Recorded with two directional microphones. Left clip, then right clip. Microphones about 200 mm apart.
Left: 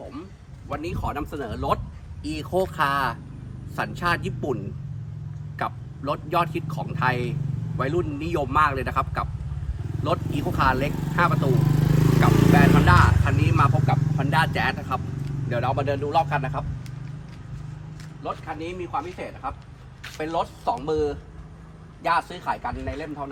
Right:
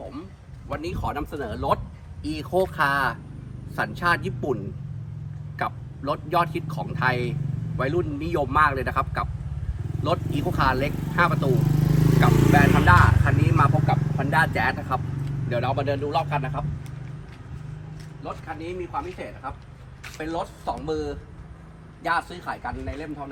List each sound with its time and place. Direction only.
0.0 s a sound: centre (ahead or behind)
0.7 s speech: centre (ahead or behind)
18.3 s speech: 5° left (ahead or behind)
20.1 s a sound: centre (ahead or behind)
20.3 s speech: 30° left (ahead or behind)
22.3 s speech: 30° left (ahead or behind)